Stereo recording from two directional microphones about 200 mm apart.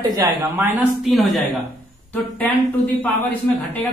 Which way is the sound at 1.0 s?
Centre (ahead or behind).